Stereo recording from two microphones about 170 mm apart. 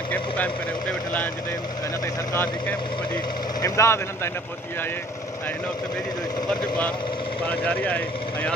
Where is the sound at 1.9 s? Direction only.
20° left (ahead or behind).